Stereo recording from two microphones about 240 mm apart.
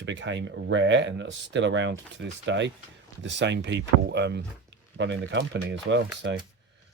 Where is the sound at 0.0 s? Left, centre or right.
Right.